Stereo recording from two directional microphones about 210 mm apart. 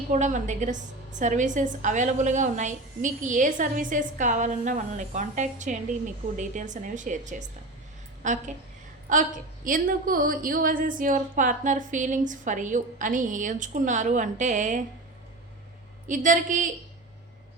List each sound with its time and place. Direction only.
0.1 s a woman's voice: 35° right (ahead or behind)
16.0 s a woman's voice: 40° right (ahead or behind)